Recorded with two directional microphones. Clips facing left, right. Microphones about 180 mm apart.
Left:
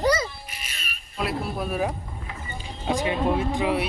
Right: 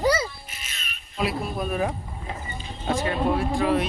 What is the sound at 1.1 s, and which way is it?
Speech, centre (ahead or behind).